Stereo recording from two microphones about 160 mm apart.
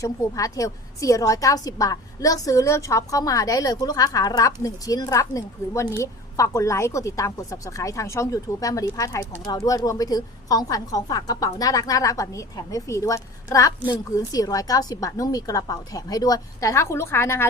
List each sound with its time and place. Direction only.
0.0 s a woman's voice: 20° left (ahead or behind)